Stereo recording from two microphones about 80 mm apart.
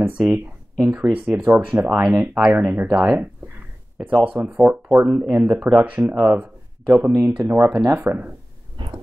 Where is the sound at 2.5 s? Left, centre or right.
Right.